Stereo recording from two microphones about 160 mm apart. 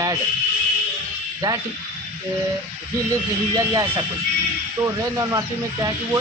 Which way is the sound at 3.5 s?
25° right (ahead or behind).